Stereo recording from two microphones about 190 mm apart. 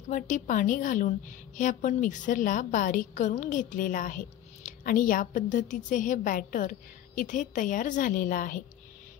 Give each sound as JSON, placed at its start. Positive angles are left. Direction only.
{"t": 0.1, "sound": "a woman's voice", "side_deg": 45}